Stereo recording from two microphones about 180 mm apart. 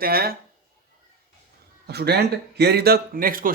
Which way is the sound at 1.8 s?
65° right (ahead or behind).